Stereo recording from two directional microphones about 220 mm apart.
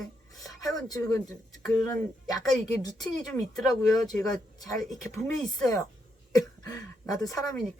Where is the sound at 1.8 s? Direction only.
15° left (ahead or behind).